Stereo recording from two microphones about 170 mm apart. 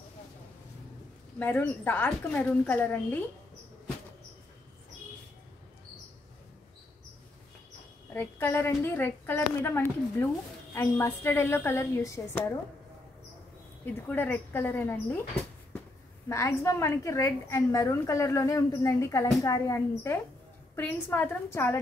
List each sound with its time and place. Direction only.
1.4 s a woman's voice: 10° left (ahead or behind)
8.1 s a woman's voice: 10° left (ahead or behind)
14.0 s a woman's voice: 10° left (ahead or behind)
16.3 s a woman's voice: 15° left (ahead or behind)